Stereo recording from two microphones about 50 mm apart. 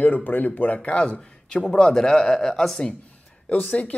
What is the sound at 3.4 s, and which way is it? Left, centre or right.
Speech, left.